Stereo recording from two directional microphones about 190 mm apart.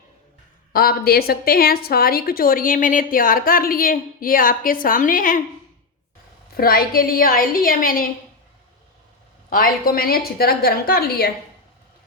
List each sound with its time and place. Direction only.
0.7 s a woman's voice: 50° left (ahead or behind)
6.6 s a woman's voice: 50° left (ahead or behind)
9.5 s a woman's voice: 50° left (ahead or behind)